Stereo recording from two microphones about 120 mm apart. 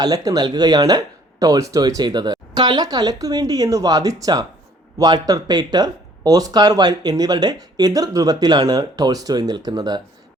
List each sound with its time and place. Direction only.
0.0 s speech: 30° right (ahead or behind)